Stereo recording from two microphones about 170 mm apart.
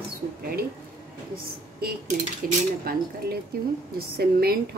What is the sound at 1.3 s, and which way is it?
A woman's voice, 65° right (ahead or behind).